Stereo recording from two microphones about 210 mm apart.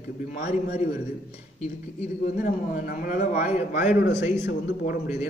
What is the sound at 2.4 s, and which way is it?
A man's voice, 40° left (ahead or behind).